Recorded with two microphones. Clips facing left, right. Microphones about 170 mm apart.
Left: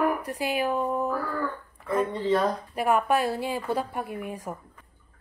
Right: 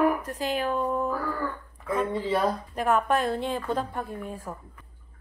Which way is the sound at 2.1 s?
10° right (ahead or behind).